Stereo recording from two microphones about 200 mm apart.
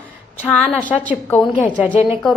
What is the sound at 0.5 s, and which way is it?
A woman's voice, 5° left (ahead or behind).